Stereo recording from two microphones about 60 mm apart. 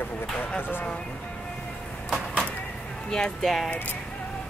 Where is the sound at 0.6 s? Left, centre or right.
Left.